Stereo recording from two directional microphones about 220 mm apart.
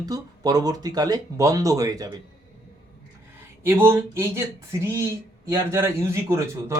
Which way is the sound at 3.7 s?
10° right (ahead or behind).